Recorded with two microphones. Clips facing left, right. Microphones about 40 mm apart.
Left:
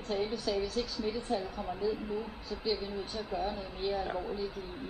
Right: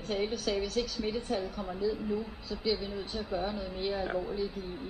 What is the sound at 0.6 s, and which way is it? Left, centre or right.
Speech, right.